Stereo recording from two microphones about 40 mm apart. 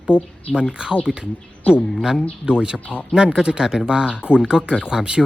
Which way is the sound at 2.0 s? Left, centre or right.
Centre.